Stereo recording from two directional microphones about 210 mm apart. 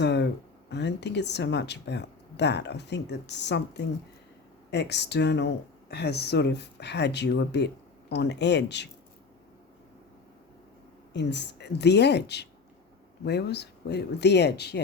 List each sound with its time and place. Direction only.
0.0 s a sound: 55° left (ahead or behind)
0.7 s speech: 55° left (ahead or behind)
11.1 s speech: 55° left (ahead or behind)